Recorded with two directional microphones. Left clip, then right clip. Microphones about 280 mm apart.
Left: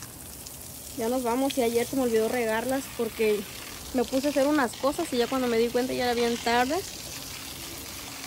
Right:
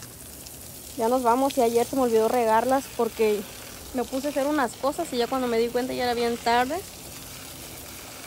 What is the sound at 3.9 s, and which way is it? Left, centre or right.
Speech, centre.